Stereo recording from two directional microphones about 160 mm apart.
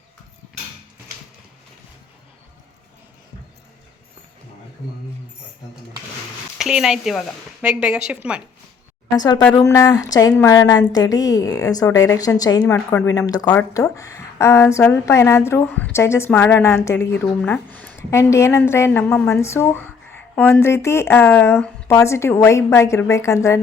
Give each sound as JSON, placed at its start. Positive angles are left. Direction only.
{"t": 6.6, "sound": "a woman's voice", "side_deg": -5}
{"t": 9.1, "sound": "a woman's voice", "side_deg": 25}
{"t": 13.4, "sound": "a woman's voice", "side_deg": 10}